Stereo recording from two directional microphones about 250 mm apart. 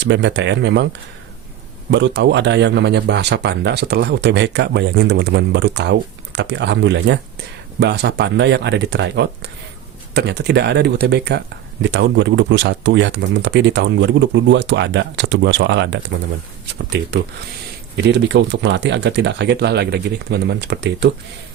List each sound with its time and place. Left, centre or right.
0.0 s speech: right
1.9 s speech: right